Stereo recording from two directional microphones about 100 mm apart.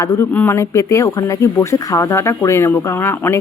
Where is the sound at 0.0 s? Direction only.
30° left (ahead or behind).